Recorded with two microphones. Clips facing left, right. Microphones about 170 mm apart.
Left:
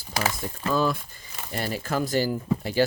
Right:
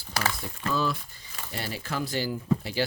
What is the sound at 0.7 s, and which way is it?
Speech, 45° left (ahead or behind).